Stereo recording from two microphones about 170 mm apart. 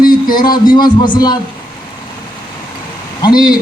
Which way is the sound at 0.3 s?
25° left (ahead or behind).